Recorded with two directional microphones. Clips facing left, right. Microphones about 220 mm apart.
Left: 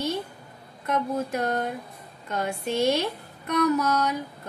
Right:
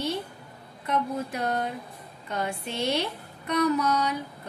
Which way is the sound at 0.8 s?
45° left (ahead or behind).